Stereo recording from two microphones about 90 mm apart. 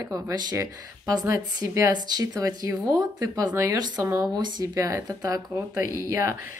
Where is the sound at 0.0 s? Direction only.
45° right (ahead or behind).